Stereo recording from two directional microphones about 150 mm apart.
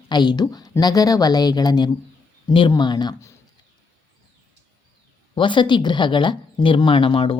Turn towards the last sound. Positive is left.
turn(degrees=35)  # may be behind; listen again after turning